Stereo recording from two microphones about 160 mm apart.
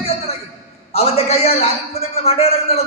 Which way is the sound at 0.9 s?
40° left (ahead or behind).